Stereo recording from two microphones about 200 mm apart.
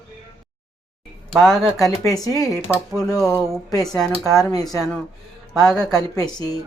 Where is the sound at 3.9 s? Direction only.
Centre (ahead or behind).